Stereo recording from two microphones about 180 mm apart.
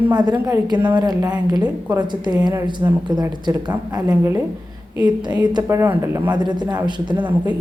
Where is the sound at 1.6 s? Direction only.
10° right (ahead or behind).